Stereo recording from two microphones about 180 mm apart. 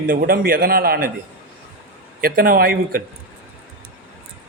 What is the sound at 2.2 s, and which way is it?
Speech, 55° right (ahead or behind).